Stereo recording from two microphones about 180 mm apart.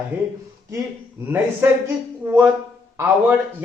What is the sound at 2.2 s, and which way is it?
Speech, 10° right (ahead or behind).